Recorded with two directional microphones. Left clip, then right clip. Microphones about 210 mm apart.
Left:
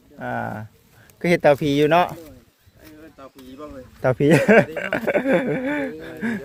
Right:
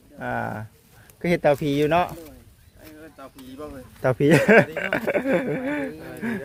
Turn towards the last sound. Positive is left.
turn(degrees=15)  # may be behind; listen again after turning